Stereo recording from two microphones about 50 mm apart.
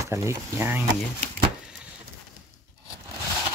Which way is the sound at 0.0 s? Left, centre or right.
Right.